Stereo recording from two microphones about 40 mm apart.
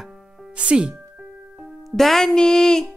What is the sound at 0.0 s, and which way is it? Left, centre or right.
Music, centre.